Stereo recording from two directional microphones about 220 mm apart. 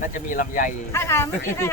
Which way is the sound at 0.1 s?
35° left (ahead or behind).